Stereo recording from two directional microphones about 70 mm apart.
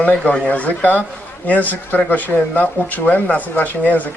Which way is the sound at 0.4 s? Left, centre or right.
Left.